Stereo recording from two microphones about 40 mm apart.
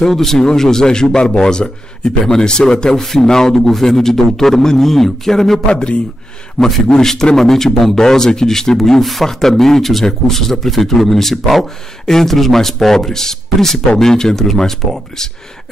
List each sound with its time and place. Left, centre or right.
0.0 s a man's voice: centre
5.7 s a man's voice: left
6.9 s a man's voice: centre